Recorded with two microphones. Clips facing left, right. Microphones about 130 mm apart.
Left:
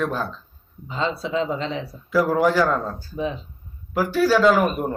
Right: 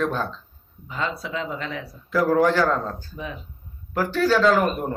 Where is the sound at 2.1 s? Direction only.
5° left (ahead or behind).